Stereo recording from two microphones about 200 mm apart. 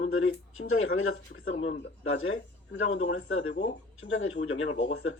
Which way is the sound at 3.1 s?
75° left (ahead or behind).